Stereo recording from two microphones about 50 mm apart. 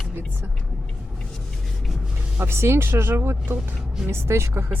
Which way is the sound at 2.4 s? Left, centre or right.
Right.